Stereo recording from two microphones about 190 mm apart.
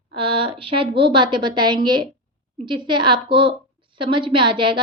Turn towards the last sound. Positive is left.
turn(degrees=-25)  # may be behind; listen again after turning